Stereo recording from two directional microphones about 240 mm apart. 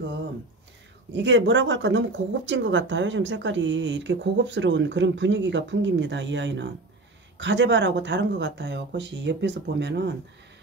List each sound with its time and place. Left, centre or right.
1.1 s speech: right